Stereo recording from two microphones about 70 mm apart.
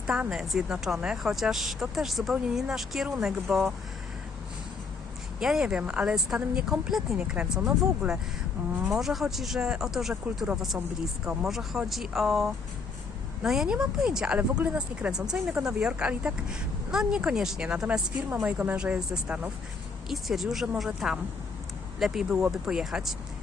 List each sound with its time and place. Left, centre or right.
0.3 s speech: centre
5.4 s speech: centre
14.3 s speech: right
18.4 s speech: right